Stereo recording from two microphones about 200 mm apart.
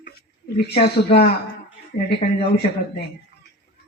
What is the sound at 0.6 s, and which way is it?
A man's voice, 55° left (ahead or behind).